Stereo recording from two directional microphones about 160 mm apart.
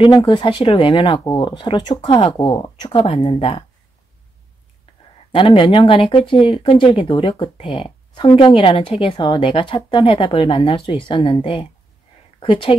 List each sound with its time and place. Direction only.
0.0 s speech: 30° left (ahead or behind)
5.3 s speech: 35° left (ahead or behind)